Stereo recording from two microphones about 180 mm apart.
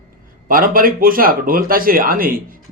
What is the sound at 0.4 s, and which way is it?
Speech, 50° right (ahead or behind).